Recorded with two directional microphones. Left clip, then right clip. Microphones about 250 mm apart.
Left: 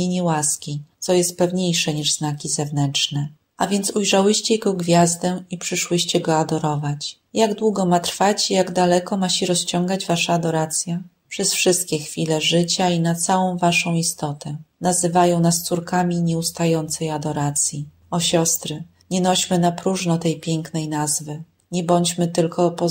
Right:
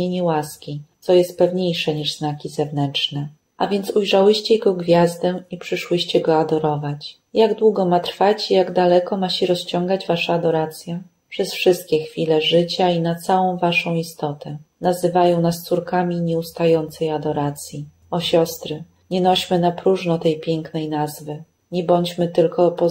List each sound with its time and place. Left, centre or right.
0.0 s a woman's voice: left